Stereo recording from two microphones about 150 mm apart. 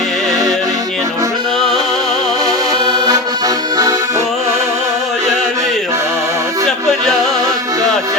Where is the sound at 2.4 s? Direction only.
25° right (ahead or behind).